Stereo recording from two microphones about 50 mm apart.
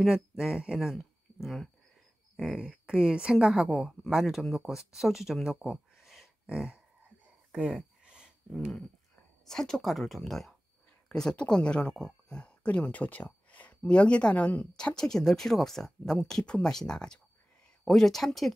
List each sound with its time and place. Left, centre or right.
0.1 s speech: centre
0.9 s a sound: centre
2.5 s a woman's voice: right
8.0 s a sound: centre
9.4 s speech: centre
11.1 s speech: centre; by 14.7 s left
14.8 s speech: centre